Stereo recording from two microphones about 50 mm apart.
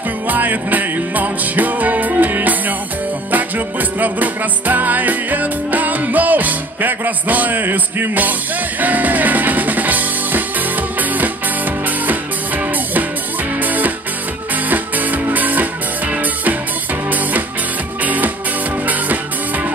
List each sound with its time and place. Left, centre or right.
0.3 s music: right
12.1 s music: right
18.0 s music: right